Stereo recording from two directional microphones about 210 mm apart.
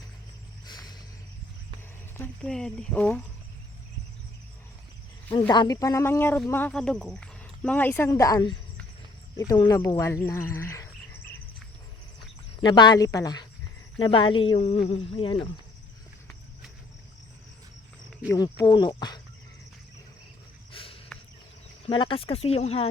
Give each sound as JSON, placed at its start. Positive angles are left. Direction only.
{"t": 0.6, "sound": "a sound", "side_deg": 20}
{"t": 2.1, "sound": "speech", "side_deg": 5}
{"t": 5.5, "sound": "speech", "side_deg": 20}
{"t": 12.6, "sound": "speech", "side_deg": 20}
{"t": 18.3, "sound": "speech", "side_deg": 20}
{"t": 20.7, "sound": "a sound", "side_deg": 25}
{"t": 21.8, "sound": "speech", "side_deg": 25}